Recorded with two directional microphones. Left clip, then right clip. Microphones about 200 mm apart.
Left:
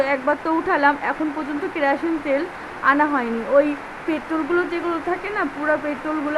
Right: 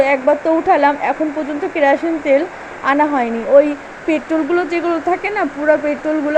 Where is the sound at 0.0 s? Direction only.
10° right (ahead or behind).